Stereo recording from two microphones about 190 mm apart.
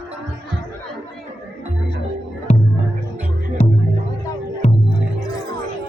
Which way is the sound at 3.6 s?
35° left (ahead or behind).